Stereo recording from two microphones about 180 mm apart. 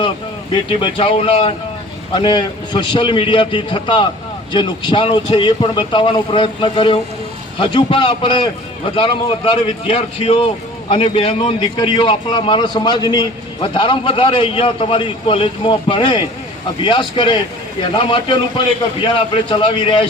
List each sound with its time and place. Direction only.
0.5 s speech: 30° left (ahead or behind)